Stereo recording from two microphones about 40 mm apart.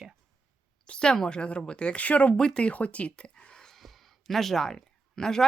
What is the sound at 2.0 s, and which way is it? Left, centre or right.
Speech, left.